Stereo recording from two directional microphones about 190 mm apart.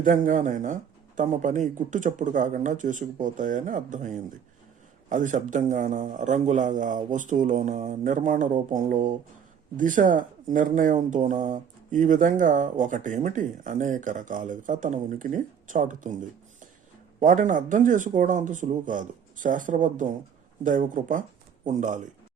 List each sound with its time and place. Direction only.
0.0 s speech: 45° right (ahead or behind)
17.2 s speech: 45° right (ahead or behind)